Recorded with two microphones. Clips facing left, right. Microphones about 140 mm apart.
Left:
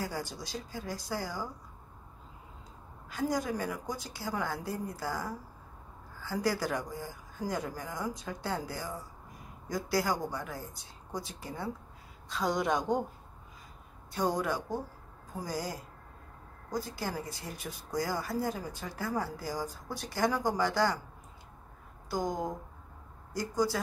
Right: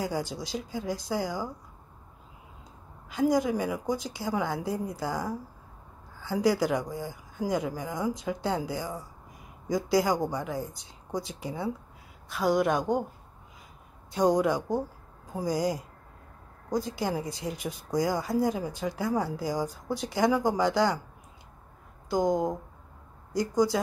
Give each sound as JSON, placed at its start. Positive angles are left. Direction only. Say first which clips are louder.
{"t": 0.0, "sound": "speech", "louder": "right 6 dB", "side_deg": -15}
{"t": 3.1, "sound": "a woman's voice", "louder": "right 7 dB", "side_deg": -15}
{"t": 14.1, "sound": "speech", "louder": "right 7 dB", "side_deg": -15}
{"t": 22.1, "sound": "speech", "louder": "right 7 dB", "side_deg": -20}